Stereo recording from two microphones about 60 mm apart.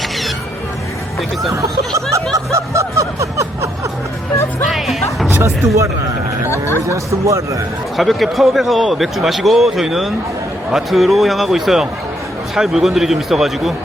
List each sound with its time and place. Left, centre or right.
1.9 s a man's voice: right
2.3 s snicker: right
4.7 s music: centre
5.3 s speech: right
6.5 s speech: left
6.8 s a man's voice: right
7.9 s speech: centre